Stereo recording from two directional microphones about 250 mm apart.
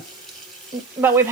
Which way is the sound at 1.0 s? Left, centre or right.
Centre.